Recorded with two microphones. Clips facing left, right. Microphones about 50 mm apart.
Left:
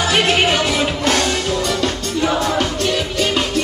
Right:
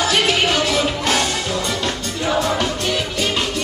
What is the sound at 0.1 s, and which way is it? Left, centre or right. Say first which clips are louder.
Music: left 5 dB; centre.